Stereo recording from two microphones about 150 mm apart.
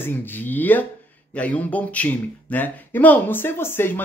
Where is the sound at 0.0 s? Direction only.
15° left (ahead or behind).